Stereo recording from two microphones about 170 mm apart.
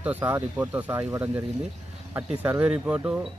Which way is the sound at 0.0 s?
10° right (ahead or behind).